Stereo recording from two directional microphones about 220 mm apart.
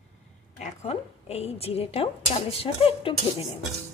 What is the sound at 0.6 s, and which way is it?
Speech, 30° left (ahead or behind).